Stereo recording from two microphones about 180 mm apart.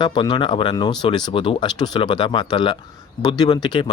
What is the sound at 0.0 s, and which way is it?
Speech, 25° left (ahead or behind).